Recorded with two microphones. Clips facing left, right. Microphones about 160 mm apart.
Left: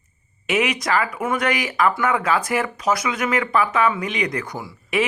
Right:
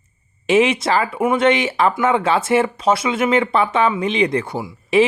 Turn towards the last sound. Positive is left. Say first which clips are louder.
# right 7 dB
turn(degrees=-25)  # may be behind; listen again after turning